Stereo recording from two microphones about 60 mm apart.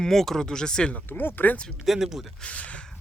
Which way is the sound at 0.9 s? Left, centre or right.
Left.